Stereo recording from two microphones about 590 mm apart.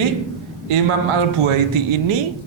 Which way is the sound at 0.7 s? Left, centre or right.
Right.